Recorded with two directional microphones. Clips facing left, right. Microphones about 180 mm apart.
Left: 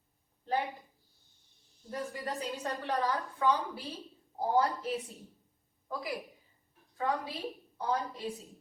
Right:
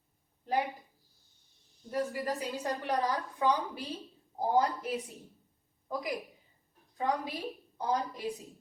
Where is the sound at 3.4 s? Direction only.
20° right (ahead or behind).